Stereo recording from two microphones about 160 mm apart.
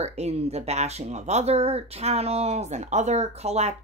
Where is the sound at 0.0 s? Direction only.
40° right (ahead or behind).